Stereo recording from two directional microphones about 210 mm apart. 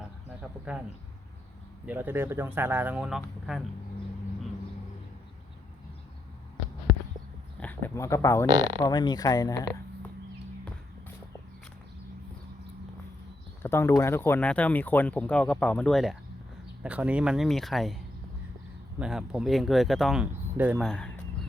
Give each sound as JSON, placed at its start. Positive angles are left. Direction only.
{"t": 0.6, "sound": "speech", "side_deg": -5}
{"t": 1.9, "sound": "speech", "side_deg": -10}
{"t": 7.6, "sound": "speech", "side_deg": 10}
{"t": 13.6, "sound": "speech", "side_deg": 10}
{"t": 18.9, "sound": "speech", "side_deg": -5}